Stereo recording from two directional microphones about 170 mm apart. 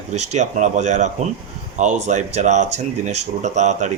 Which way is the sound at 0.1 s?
45° right (ahead or behind).